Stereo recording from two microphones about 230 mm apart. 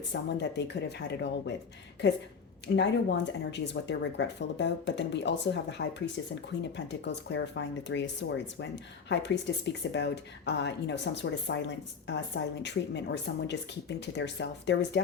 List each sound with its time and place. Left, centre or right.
0.1 s speech: left
12.6 s speech: left